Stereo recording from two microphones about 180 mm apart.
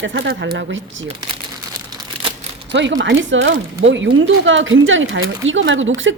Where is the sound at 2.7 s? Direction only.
85° right.